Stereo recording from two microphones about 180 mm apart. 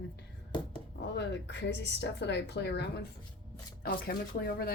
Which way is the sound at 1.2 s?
70° left (ahead or behind).